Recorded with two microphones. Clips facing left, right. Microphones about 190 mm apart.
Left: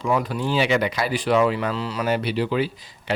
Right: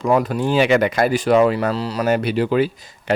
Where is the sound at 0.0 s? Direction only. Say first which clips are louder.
Right 5 dB; 50° right (ahead or behind).